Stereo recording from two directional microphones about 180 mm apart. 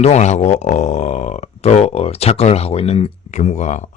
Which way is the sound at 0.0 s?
40° left (ahead or behind).